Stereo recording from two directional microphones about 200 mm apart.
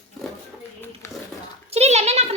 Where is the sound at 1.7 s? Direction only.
30° right (ahead or behind).